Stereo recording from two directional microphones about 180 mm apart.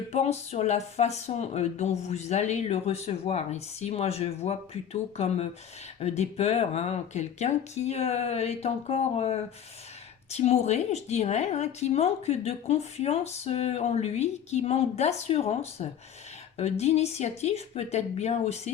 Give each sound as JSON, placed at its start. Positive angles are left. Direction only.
{"t": 0.1, "sound": "a woman's voice", "side_deg": 35}